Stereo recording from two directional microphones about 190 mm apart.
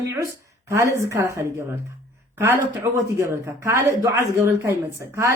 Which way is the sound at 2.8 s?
15° right (ahead or behind).